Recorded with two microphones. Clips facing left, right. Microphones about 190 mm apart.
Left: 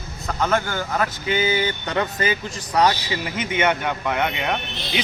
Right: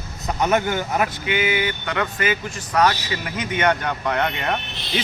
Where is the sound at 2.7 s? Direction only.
15° left (ahead or behind).